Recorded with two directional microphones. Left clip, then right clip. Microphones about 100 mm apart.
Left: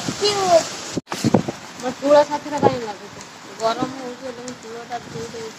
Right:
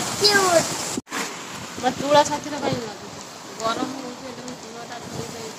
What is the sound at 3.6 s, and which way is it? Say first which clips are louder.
Speech: left 4 dB; 30° left (ahead or behind).